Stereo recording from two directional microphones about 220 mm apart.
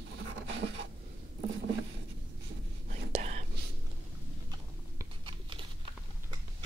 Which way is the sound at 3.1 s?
30° right (ahead or behind).